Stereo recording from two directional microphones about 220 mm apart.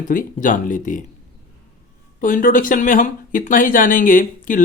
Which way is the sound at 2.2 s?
35° left (ahead or behind).